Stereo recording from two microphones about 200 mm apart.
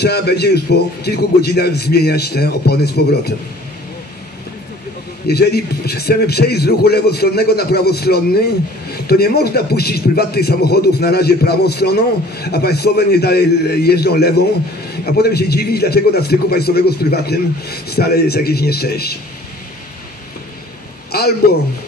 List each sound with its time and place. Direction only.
0.0 s a man's voice: 55° left (ahead or behind)
5.2 s a man's voice: 55° left (ahead or behind)